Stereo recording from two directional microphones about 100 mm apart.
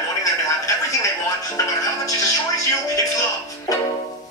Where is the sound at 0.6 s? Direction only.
35° left (ahead or behind).